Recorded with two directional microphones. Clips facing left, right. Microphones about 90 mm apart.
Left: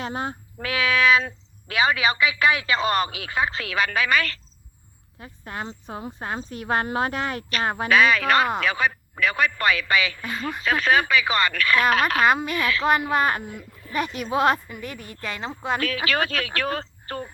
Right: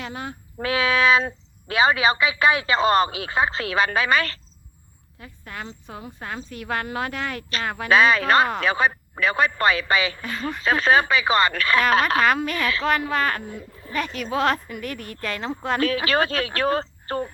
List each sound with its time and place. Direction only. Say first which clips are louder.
0.0 s speech: left 4 dB; 30° left (ahead or behind)
0.6 s speech: right 1 dB; 30° right (ahead or behind)
5.2 s speech: left 3 dB; 30° left (ahead or behind)
7.9 s speech: right 2 dB; 30° right (ahead or behind)
12.2 s speech: left 1 dB; 5° left (ahead or behind)
13.1 s speech: left 2 dB; 15° left (ahead or behind)
13.5 s speech: right 2 dB; 35° right (ahead or behind)
14.2 s speech: left 2 dB; 15° left (ahead or behind)
16.0 s speech: right 3 dB; 35° right (ahead or behind)